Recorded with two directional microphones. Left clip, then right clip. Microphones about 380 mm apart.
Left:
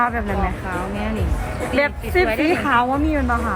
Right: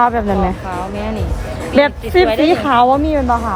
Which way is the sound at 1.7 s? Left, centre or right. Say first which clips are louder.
Right 7 dB; right.